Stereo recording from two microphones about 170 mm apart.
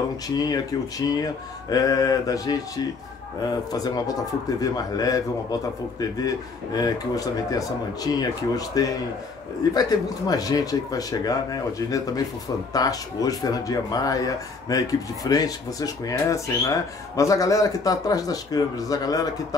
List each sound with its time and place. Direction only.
0.3 s speech: 20° left (ahead or behind)